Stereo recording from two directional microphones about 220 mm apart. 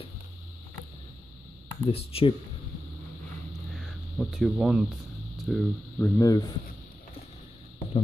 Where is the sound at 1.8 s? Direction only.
25° left (ahead or behind).